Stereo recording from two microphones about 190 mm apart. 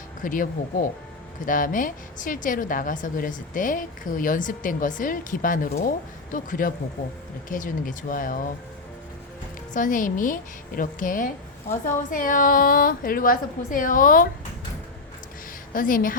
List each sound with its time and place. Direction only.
0.2 s a woman's voice: 45° left (ahead or behind)
9.7 s a woman's voice: 45° left (ahead or behind)
15.7 s a woman's voice: 45° left (ahead or behind)